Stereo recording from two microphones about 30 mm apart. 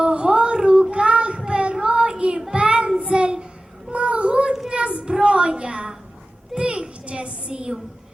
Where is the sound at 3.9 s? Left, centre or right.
Right.